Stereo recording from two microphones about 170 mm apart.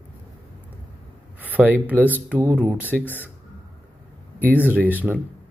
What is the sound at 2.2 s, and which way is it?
Speech, 10° right (ahead or behind).